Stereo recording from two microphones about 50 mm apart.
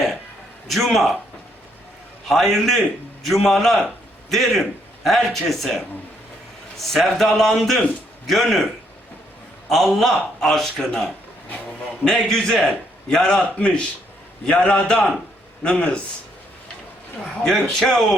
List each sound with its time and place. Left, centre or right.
0.7 s speech: centre
2.2 s a man's voice: centre
9.6 s a man's voice: centre
12.3 s a man's voice: centre
17.4 s speech: centre